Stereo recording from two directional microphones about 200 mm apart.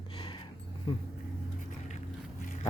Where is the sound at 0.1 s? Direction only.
25° left (ahead or behind).